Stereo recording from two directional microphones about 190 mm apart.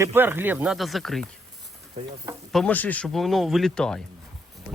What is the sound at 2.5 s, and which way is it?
Speech, 5° left (ahead or behind).